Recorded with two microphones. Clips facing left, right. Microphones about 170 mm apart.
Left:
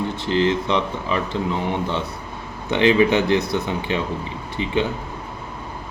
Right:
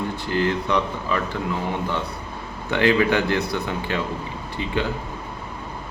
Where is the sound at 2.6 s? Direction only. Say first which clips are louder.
Left 3 dB; 20° left (ahead or behind).